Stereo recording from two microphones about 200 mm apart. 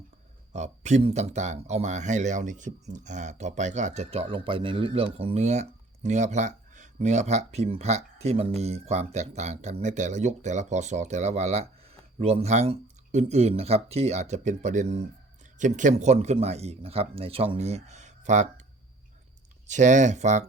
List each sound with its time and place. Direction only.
0.5 s speech: 35° right (ahead or behind)
19.6 s speech: 35° right (ahead or behind)